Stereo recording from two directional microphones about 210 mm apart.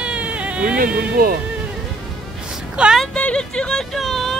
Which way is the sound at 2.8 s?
Centre (ahead or behind).